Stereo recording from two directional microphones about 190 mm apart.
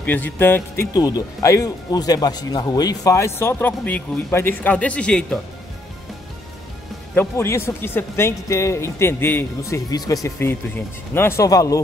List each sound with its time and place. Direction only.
0.0 s speech: 10° left (ahead or behind)
7.2 s speech: 15° left (ahead or behind)